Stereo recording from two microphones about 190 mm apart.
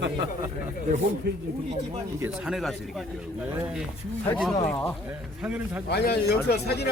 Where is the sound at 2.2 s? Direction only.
Centre (ahead or behind).